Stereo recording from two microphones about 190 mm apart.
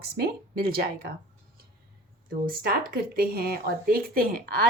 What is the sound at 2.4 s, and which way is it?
A woman's voice, 50° right (ahead or behind).